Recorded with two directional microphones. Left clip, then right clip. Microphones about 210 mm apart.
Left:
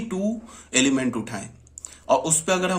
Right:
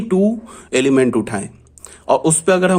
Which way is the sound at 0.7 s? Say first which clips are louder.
Right 8 dB; 50° right (ahead or behind).